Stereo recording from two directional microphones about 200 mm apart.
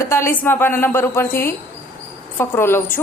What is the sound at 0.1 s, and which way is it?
A woman's voice, 10° left (ahead or behind).